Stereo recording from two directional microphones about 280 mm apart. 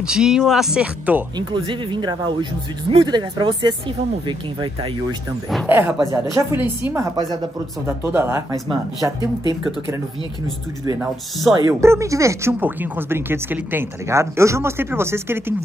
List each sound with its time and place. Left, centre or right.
0.0 s speech: centre
1.5 s speech: centre
5.5 s speech: centre
11.5 s speech: centre